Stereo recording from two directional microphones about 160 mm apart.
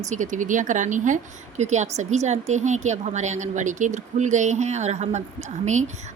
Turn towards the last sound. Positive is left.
turn(degrees=-45)  # may be behind; listen again after turning